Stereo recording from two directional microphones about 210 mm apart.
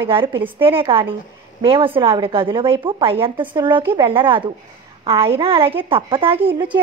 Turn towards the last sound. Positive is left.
turn(degrees=-25)  # may be behind; listen again after turning